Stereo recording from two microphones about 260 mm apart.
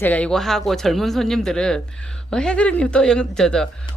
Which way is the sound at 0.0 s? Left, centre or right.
Centre.